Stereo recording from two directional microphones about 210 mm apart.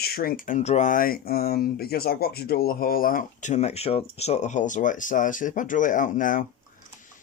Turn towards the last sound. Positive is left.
turn(degrees=40)  # may be behind; listen again after turning